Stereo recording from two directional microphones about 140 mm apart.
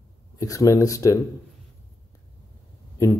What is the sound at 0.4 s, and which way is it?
Speech, 25° left (ahead or behind).